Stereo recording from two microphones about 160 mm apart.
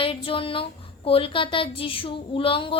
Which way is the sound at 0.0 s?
35° left (ahead or behind).